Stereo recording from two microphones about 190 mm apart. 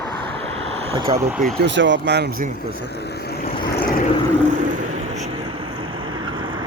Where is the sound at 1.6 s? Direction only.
70° right (ahead or behind).